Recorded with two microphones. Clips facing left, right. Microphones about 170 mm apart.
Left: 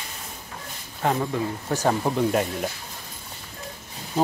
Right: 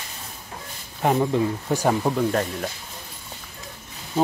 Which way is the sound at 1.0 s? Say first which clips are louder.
Right 4 dB; 15° right (ahead or behind).